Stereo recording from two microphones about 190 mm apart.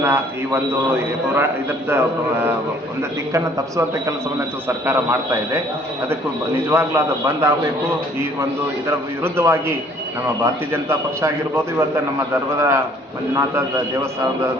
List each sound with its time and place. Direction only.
0.0 s a man's voice: 15° right (ahead or behind)
6.7 s a man's voice: 10° right (ahead or behind)
9.2 s a man's voice: 15° right (ahead or behind)